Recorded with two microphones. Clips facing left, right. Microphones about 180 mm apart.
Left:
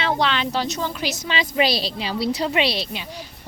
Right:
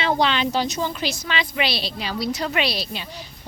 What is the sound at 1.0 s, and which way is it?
Speech, 20° left (ahead or behind).